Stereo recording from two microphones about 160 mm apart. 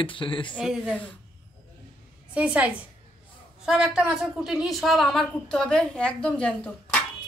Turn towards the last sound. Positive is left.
turn(degrees=10)  # may be behind; listen again after turning